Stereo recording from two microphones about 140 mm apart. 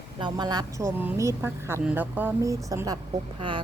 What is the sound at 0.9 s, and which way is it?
A woman's voice, 15° right (ahead or behind).